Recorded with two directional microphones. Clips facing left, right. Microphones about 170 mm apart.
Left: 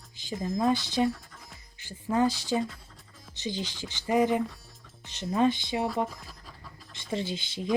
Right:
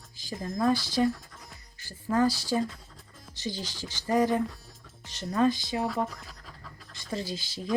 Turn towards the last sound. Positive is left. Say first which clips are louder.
# left 2 dB
turn(degrees=20)  # may be behind; listen again after turning